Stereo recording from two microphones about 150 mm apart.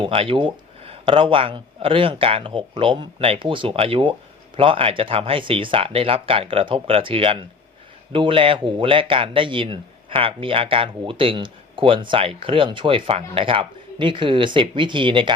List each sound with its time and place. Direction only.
0.0 s speech: 40° right (ahead or behind)